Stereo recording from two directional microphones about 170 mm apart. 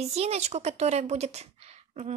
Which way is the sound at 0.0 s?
40° right (ahead or behind).